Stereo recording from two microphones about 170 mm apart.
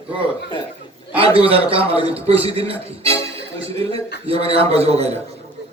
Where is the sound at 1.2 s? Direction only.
35° right (ahead or behind).